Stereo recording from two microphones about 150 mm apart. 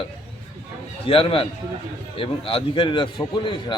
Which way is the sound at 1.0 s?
35° left (ahead or behind).